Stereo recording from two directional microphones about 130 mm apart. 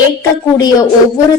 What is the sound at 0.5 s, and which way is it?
Speech, 25° left (ahead or behind).